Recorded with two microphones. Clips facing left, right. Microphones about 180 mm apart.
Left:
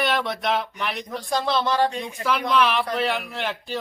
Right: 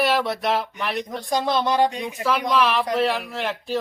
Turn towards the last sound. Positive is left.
turn(degrees=0)  # may be behind; listen again after turning